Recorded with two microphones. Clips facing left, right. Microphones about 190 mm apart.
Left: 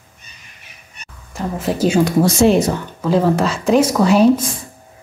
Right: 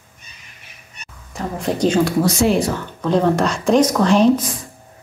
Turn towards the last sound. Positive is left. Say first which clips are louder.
# left 2 dB
turn(degrees=10)  # may be behind; listen again after turning